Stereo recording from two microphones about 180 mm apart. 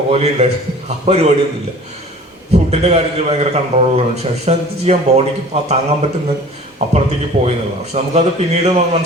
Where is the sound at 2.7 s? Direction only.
35° right (ahead or behind).